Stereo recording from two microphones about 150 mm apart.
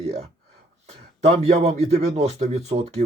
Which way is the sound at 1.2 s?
45° right (ahead or behind).